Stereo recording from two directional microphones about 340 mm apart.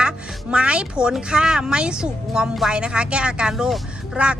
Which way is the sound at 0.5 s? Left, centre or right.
Centre.